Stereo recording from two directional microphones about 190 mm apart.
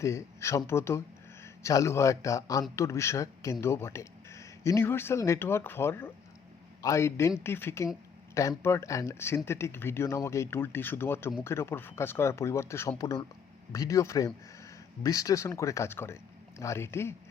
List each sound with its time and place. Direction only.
0.0 s speech: 15° left (ahead or behind)